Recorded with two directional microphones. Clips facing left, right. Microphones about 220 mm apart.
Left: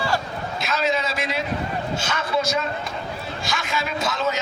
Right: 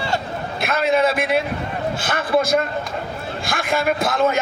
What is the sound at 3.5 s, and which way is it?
Speech, 55° right (ahead or behind).